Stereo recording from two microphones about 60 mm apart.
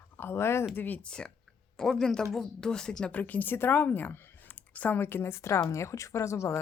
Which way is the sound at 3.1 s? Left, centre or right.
Left.